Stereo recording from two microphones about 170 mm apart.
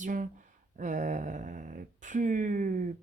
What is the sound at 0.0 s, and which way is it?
Speech, 50° right (ahead or behind).